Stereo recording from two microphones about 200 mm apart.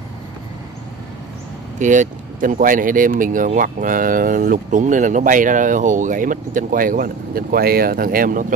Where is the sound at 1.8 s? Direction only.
40° right (ahead or behind).